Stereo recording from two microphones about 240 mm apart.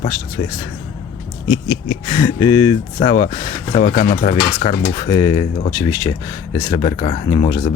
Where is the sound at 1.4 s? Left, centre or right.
Left.